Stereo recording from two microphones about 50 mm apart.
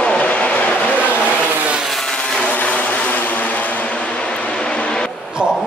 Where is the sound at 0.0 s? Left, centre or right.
Left.